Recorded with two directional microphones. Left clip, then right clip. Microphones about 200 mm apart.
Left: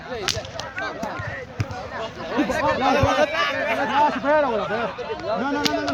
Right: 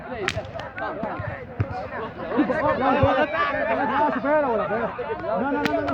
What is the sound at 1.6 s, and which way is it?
Speech, 55° left (ahead or behind).